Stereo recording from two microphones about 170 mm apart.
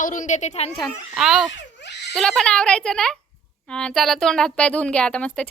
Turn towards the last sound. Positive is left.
turn(degrees=5)  # may be behind; listen again after turning